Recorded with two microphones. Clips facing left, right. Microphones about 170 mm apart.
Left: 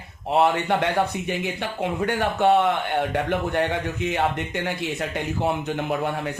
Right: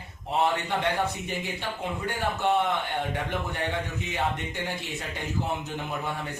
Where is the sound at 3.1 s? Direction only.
85° left.